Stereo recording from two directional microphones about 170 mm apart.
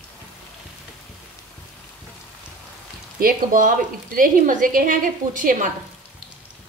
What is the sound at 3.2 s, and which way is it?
A woman's voice, 55° right (ahead or behind).